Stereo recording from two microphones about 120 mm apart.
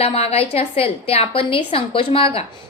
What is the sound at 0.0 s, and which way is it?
A woman's voice, 55° left (ahead or behind).